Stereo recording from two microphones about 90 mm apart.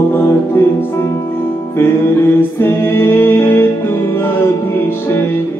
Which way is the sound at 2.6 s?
25° left (ahead or behind).